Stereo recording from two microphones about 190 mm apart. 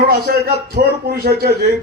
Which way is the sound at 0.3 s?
55° right (ahead or behind).